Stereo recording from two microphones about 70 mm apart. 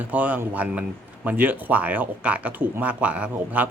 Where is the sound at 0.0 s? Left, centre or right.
Right.